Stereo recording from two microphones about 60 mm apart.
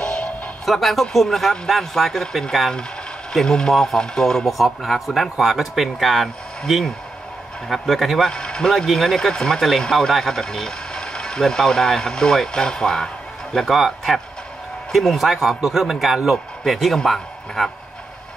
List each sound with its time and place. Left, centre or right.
0.0 s music: centre
0.7 s speech: centre
7.6 s speech: centre
8.3 s speech: centre
13.7 s speech: centre